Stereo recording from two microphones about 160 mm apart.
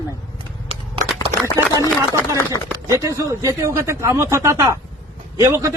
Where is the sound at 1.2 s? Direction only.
20° left (ahead or behind).